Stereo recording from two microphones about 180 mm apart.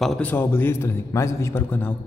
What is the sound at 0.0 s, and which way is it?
A man's voice, 5° left (ahead or behind).